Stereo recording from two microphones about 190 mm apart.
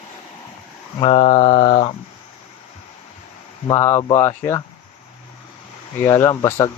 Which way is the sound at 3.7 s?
20° left (ahead or behind).